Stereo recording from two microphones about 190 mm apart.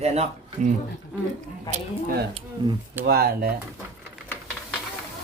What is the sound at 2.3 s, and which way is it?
Speech, 25° right (ahead or behind).